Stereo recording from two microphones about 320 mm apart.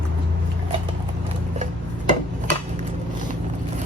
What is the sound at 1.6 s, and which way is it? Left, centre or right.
Dishes, right.